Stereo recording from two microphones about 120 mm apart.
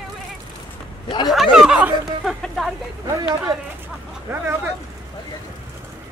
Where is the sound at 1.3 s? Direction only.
5° right (ahead or behind).